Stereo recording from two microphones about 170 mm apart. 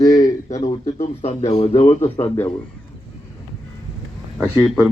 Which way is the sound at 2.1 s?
15° left (ahead or behind).